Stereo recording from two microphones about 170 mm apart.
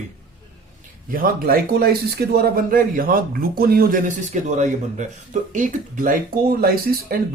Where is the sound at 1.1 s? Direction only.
60° right (ahead or behind).